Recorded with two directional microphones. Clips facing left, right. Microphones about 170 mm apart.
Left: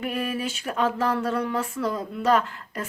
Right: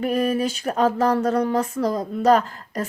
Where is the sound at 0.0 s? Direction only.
40° right (ahead or behind).